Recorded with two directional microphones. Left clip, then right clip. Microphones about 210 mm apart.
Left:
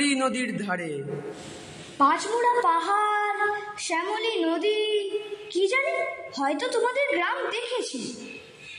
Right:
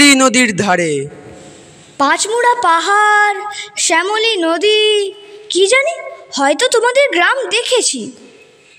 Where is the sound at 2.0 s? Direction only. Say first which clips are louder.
Right 9 dB; 50° right (ahead or behind).